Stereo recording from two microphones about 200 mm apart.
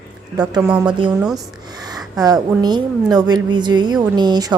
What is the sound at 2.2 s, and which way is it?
A woman's voice, 20° right (ahead or behind).